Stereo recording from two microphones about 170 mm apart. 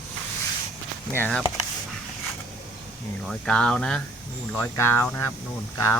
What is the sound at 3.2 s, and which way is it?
Speech, 5° left (ahead or behind).